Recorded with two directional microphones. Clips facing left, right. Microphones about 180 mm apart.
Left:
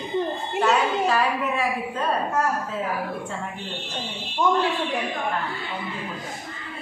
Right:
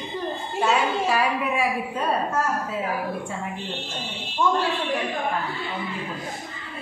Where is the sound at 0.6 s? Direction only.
10° right (ahead or behind).